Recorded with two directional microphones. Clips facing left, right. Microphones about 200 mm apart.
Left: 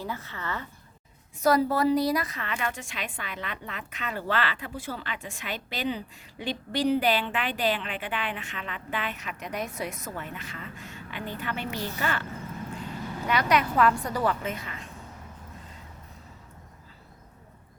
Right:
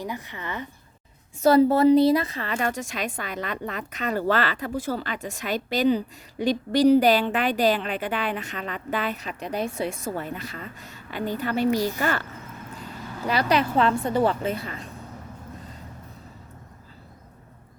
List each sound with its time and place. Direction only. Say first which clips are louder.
0.0 s a woman's voice: right 2 dB; 15° right (ahead or behind); by 12.2 s 40° right (ahead or behind)
13.2 s a woman's voice: right 3 dB; 30° right (ahead or behind)